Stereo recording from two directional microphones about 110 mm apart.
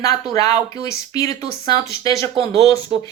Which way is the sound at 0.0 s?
30° left (ahead or behind).